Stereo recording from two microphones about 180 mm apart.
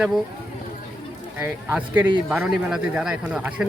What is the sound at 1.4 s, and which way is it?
Speech, 10° right (ahead or behind).